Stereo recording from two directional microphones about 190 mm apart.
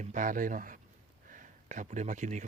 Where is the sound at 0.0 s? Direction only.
40° right (ahead or behind).